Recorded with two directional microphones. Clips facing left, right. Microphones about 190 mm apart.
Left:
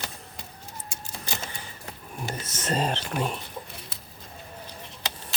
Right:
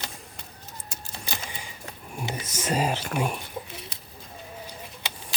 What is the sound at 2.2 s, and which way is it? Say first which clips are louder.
Speech: right 1 dB; 10° right (ahead or behind).